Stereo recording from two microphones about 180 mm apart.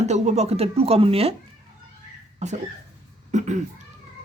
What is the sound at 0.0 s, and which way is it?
Speech, 35° right (ahead or behind).